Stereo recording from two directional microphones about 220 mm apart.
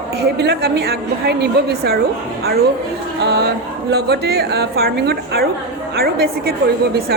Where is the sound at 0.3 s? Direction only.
45° right (ahead or behind).